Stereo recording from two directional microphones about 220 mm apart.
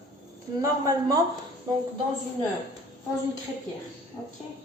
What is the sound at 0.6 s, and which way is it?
Speech, 15° right (ahead or behind).